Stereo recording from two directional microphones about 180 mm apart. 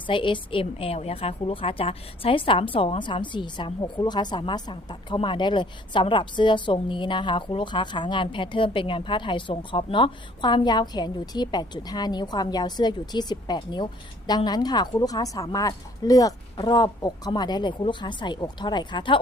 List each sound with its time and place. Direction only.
0.1 s a woman's voice: 30° left (ahead or behind)